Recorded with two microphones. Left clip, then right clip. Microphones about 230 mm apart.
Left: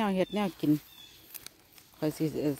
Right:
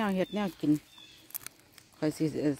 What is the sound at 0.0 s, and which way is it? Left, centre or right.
Speech, centre.